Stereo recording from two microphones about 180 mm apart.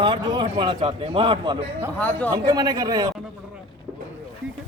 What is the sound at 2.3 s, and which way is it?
Speech, 20° right (ahead or behind).